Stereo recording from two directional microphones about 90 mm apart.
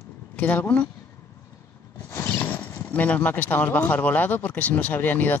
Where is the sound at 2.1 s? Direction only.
30° left (ahead or behind).